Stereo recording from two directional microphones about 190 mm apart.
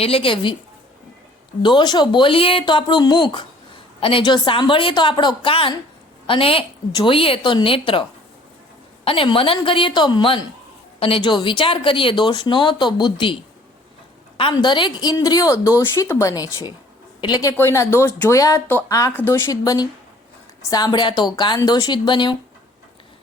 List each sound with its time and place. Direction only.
0.0 s a woman's voice: 30° left (ahead or behind)
1.6 s a woman's voice: 25° left (ahead or behind)
9.0 s a woman's voice: 30° left (ahead or behind)
14.3 s a woman's voice: 25° left (ahead or behind)